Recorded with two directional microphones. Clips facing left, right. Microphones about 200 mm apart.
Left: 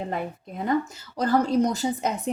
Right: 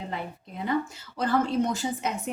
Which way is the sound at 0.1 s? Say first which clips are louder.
Left 5 dB; 50° left (ahead or behind).